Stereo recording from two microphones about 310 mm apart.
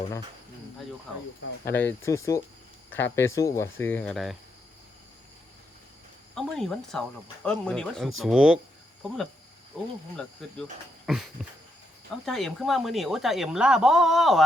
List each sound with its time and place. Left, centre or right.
1.6 s speech: centre
6.3 s speech: centre
9.7 s speech: centre
11.4 s a sound: centre
12.2 s speech: centre